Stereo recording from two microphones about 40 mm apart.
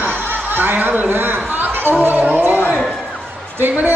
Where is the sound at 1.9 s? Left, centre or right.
Right.